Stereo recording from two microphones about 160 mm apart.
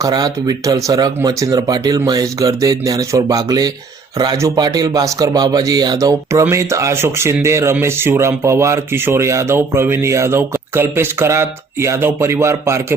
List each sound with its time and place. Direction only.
0.0 s speech: 25° right (ahead or behind)